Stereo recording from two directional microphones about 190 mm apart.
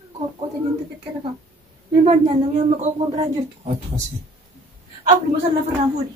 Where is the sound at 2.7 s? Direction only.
40° right (ahead or behind).